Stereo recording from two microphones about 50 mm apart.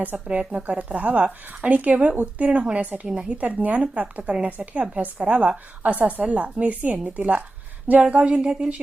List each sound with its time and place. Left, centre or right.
0.3 s a woman's voice: right
8.3 s speech: centre